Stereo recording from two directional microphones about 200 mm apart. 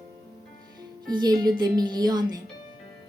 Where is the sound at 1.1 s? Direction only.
20° right (ahead or behind).